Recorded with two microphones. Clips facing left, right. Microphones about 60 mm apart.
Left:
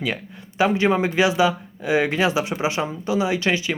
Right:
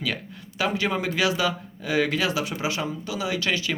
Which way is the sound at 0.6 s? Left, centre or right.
Left.